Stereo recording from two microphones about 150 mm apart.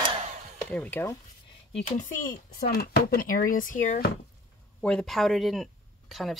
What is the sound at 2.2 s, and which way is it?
Speech, 90° left.